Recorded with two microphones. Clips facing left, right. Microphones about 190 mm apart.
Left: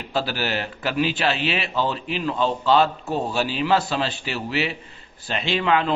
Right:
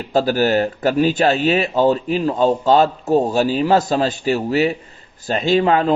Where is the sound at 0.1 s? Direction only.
45° right (ahead or behind).